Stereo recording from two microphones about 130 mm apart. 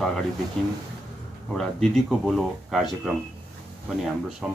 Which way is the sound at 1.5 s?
5° left (ahead or behind).